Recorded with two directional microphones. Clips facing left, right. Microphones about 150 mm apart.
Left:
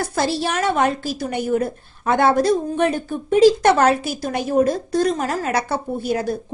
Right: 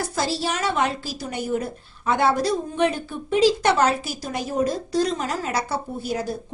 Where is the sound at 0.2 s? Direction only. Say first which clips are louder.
Left 4 dB; 55° left (ahead or behind).